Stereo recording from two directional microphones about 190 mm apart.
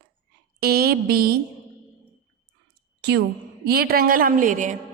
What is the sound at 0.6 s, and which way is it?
Speech, 55° right (ahead or behind).